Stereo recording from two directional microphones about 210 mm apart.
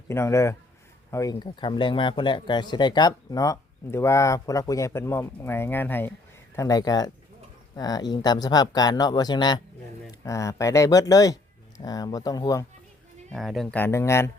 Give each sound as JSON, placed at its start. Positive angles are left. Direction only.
{"t": 0.1, "sound": "speech", "side_deg": 10}
{"t": 13.3, "sound": "speech", "side_deg": 0}